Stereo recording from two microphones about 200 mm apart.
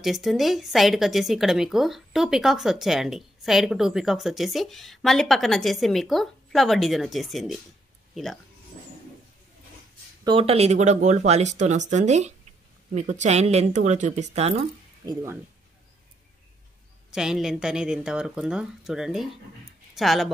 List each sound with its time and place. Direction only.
0.0 s speech: centre (ahead or behind)
10.2 s speech: 25° right (ahead or behind)
17.1 s speech: 5° right (ahead or behind)